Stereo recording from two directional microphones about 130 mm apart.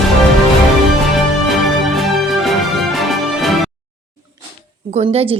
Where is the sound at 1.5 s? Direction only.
Centre (ahead or behind).